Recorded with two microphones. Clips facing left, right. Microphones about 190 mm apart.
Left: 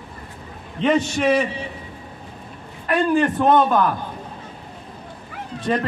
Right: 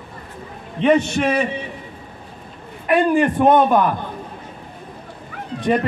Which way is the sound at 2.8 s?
15° right (ahead or behind).